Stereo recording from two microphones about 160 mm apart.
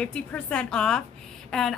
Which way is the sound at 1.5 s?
5° left (ahead or behind).